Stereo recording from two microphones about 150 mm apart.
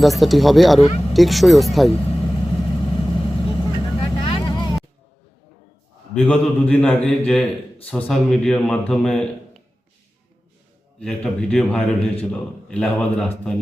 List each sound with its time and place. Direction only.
0.0 s a man's voice: centre (ahead or behind)
0.9 s speech: 40° left (ahead or behind)
1.1 s a man's voice: centre (ahead or behind)
1.9 s vehicle: 35° left (ahead or behind)
6.1 s a man's voice: 5° left (ahead or behind)
11.2 s a man's voice: 5° left (ahead or behind)